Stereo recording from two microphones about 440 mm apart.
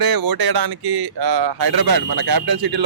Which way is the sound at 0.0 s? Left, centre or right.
Right.